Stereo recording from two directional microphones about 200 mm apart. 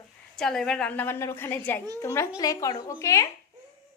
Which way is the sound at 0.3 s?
5° left (ahead or behind).